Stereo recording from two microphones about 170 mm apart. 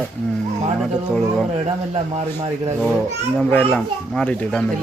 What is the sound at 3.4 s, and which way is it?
Speech, 10° left (ahead or behind).